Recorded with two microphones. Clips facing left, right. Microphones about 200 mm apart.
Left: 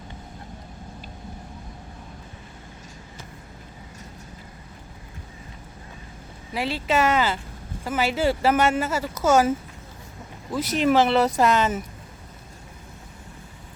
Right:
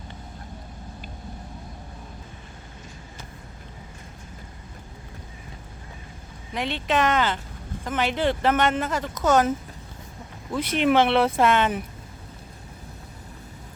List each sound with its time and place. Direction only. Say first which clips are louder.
6.5 s speech: left 1 dB; 5° left (ahead or behind)
10.6 s speech: even; 40° left (ahead or behind)
10.8 s speech: even; centre (ahead or behind)